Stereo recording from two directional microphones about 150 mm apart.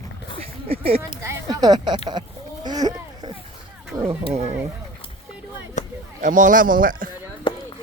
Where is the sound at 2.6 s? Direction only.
25° right (ahead or behind).